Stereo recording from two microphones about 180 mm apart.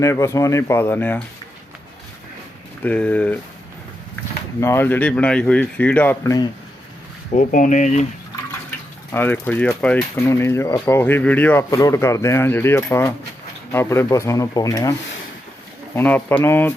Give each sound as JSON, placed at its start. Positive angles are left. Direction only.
{"t": 0.0, "sound": "speech", "side_deg": 15}
{"t": 2.8, "sound": "speech", "side_deg": 10}
{"t": 4.6, "sound": "speech", "side_deg": 15}
{"t": 7.3, "sound": "speech", "side_deg": 45}
{"t": 9.1, "sound": "speech", "side_deg": 10}
{"t": 16.0, "sound": "speech", "side_deg": 10}